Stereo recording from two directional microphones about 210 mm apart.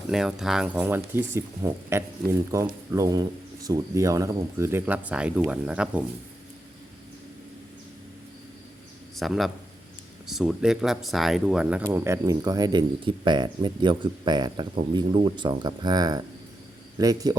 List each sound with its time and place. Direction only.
0.1 s speech: 5° right (ahead or behind)
9.1 s a man's voice: centre (ahead or behind); by 17.3 s 15° right (ahead or behind)